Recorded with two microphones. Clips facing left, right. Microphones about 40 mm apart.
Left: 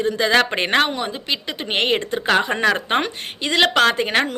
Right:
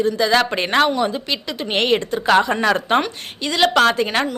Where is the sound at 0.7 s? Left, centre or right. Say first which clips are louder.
Right 2 dB; centre.